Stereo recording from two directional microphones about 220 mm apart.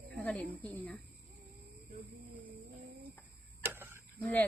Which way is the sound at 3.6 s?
10° right (ahead or behind).